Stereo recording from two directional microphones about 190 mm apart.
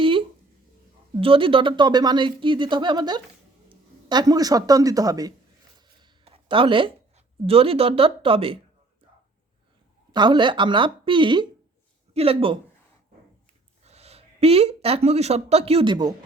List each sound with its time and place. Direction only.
0.0 s a sound: 25° right (ahead or behind)
1.2 s speech: 30° right (ahead or behind)
6.0 s a sound: 30° right (ahead or behind)
7.4 s speech: 30° right (ahead or behind)
10.1 s speech: 25° right (ahead or behind)
13.8 s speech: 35° right (ahead or behind)